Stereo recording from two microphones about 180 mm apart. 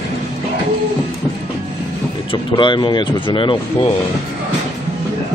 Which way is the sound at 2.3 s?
25° left (ahead or behind).